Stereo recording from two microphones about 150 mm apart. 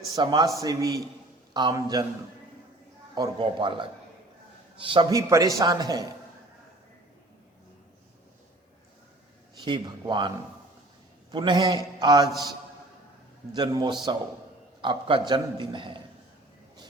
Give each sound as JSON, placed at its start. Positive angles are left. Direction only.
{"t": 0.2, "sound": "a man's voice", "side_deg": -30}
{"t": 3.2, "sound": "a man's voice", "side_deg": -35}
{"t": 9.6, "sound": "a man's voice", "side_deg": -30}
{"t": 13.6, "sound": "a man's voice", "side_deg": -30}